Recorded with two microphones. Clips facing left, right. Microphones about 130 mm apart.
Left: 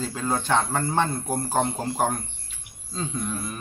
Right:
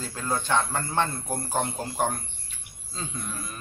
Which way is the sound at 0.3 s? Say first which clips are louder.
Left 2 dB; 35° left (ahead or behind).